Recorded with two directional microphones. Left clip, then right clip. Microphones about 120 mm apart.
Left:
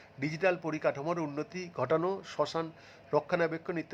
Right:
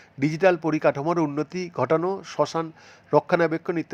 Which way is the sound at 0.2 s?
50° right (ahead or behind).